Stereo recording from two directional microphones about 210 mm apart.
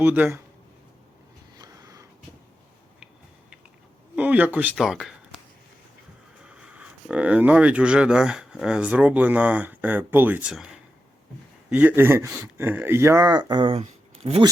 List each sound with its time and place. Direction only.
0.0 s speech: 10° right (ahead or behind)
1.5 s a sound: 20° right (ahead or behind)
4.1 s speech: 5° right (ahead or behind)
6.4 s speech: 5° right (ahead or behind)
11.7 s speech: 5° right (ahead or behind); by 14.4 s 25° right (ahead or behind)